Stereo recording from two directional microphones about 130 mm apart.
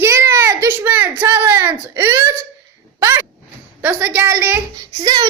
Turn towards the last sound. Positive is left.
turn(degrees=-35)  # may be behind; listen again after turning